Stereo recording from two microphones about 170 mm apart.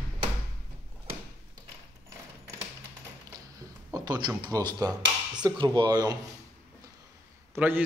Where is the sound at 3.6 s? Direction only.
20° right (ahead or behind).